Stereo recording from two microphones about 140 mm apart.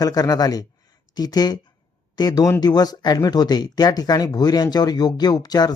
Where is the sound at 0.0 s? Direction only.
25° left (ahead or behind).